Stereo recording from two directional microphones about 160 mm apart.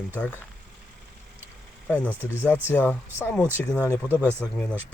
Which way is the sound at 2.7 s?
10° left (ahead or behind).